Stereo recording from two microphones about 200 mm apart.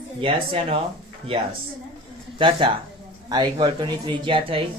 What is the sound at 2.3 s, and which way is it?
Speech, 25° right (ahead or behind).